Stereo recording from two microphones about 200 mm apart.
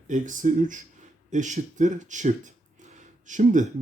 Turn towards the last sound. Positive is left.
turn(degrees=-40)  # may be behind; listen again after turning